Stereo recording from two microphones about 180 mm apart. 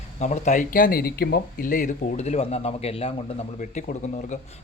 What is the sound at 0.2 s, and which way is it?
Speech, 40° left (ahead or behind).